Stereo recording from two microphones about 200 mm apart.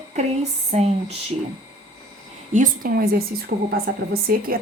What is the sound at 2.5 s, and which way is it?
A woman's voice, 45° right (ahead or behind).